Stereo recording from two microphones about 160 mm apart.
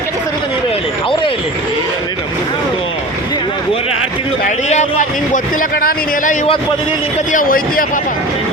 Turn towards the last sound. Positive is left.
turn(degrees=60)  # may be behind; listen again after turning